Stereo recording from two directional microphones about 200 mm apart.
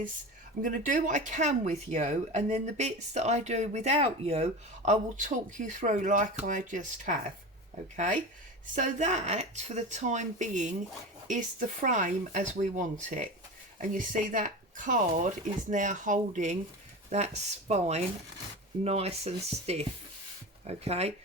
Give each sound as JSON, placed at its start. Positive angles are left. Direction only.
{"t": 0.6, "sound": "speech", "side_deg": -40}